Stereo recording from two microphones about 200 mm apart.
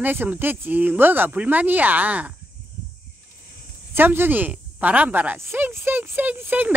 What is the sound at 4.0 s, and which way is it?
Speech, 10° right (ahead or behind).